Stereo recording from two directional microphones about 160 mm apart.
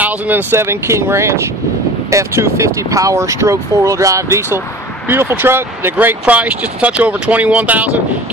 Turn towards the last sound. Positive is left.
turn(degrees=-10)  # may be behind; listen again after turning